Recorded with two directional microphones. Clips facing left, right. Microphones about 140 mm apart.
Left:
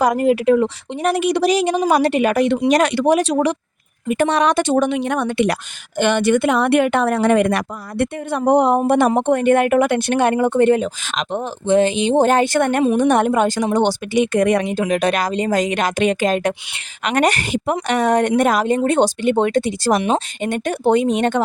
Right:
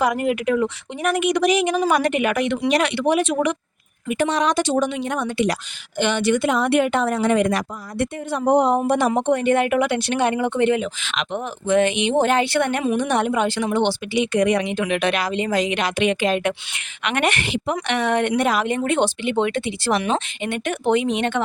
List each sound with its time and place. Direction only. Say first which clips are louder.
0.0 s speech: left 5 dB; 35° left (ahead or behind)
4.3 s a woman's voice: left 3 dB; 60° left (ahead or behind); by 21.4 s 40° left (ahead or behind)